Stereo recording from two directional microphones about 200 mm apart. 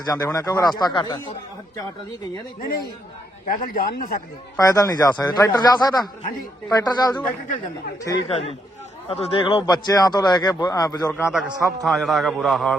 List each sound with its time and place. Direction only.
0.0 s speech: 20° left (ahead or behind)
2.6 s a man's voice: 50° left (ahead or behind)
4.5 s speech: 15° left (ahead or behind)
8.3 s a man's voice: 30° left (ahead or behind)
11.3 s a man's voice: centre (ahead or behind)